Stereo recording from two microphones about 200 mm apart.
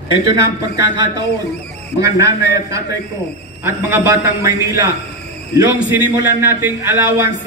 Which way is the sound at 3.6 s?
15° right (ahead or behind).